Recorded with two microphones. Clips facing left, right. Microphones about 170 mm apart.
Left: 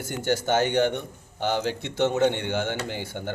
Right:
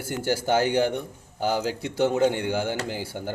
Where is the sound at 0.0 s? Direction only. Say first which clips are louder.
Even; 10° right (ahead or behind).